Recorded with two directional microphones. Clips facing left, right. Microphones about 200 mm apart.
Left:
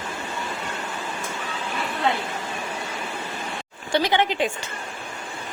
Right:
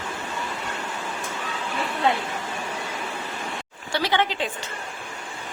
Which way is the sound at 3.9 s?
15° left (ahead or behind).